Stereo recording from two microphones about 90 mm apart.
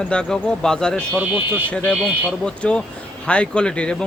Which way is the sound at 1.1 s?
15° right (ahead or behind).